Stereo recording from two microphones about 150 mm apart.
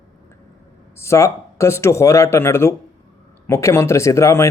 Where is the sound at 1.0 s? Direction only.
20° left (ahead or behind).